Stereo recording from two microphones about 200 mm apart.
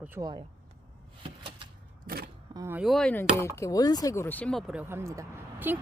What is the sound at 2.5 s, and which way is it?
Speech, 15° right (ahead or behind).